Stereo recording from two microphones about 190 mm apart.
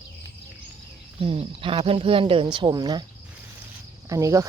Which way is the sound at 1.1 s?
30° right (ahead or behind).